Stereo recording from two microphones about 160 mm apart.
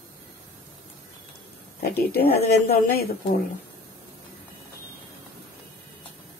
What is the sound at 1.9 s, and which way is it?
A woman's voice, 80° left.